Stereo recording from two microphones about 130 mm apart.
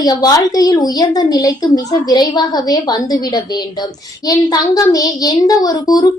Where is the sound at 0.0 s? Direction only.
30° left (ahead or behind).